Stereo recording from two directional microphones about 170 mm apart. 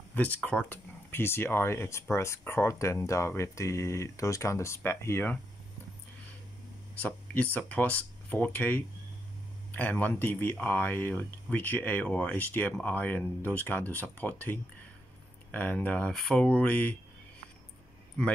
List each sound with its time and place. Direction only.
0.1 s speech: 10° left (ahead or behind)
7.0 s speech: 10° left (ahead or behind)